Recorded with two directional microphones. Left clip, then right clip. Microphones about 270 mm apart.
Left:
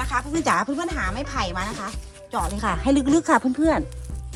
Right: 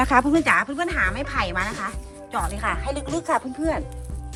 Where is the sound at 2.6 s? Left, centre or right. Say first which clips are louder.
Left 4 dB; left.